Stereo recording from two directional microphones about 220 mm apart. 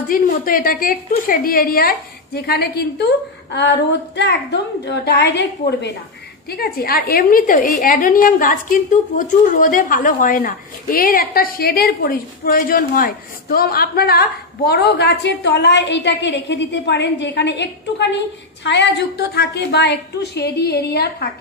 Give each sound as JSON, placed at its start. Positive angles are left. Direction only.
{"t": 0.1, "sound": "a woman's voice", "side_deg": 40}